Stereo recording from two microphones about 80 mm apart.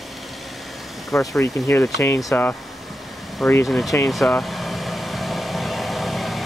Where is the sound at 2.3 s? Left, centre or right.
Left.